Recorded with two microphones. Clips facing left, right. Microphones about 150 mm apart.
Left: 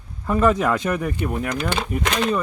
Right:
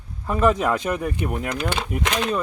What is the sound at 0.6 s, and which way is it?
Speech, 10° right (ahead or behind).